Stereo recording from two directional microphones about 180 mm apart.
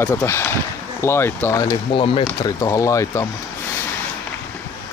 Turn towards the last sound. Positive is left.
turn(degrees=15)  # may be behind; listen again after turning